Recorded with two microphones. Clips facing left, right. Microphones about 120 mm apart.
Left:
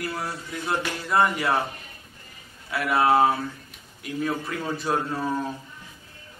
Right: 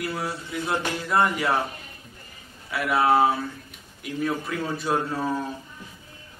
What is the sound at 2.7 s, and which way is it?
A man's voice, centre (ahead or behind).